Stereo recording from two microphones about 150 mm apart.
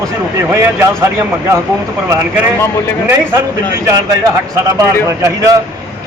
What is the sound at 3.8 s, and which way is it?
Speech, 20° right (ahead or behind).